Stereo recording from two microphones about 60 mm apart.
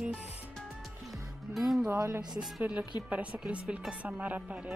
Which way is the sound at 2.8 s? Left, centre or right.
Right.